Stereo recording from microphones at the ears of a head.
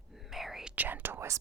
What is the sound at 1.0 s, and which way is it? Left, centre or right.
Whispering, right.